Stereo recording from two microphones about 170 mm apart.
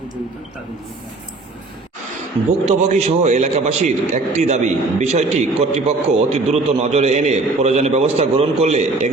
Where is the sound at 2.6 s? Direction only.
40° right (ahead or behind).